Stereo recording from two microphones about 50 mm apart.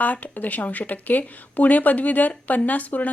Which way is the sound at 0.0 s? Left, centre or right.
Left.